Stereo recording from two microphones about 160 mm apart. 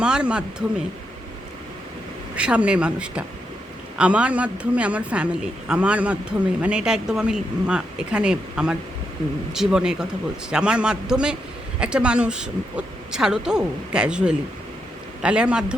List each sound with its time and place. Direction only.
0.0 s speech: 5° right (ahead or behind)
2.3 s a woman's voice: 5° right (ahead or behind)